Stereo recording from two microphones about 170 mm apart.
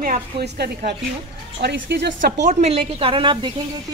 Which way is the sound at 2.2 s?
45° right (ahead or behind).